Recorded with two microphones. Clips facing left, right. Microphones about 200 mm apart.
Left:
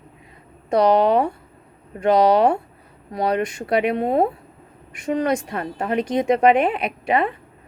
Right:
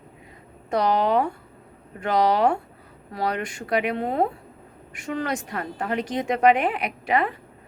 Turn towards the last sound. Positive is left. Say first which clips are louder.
# left 3 dB
turn(degrees=25)  # may be behind; listen again after turning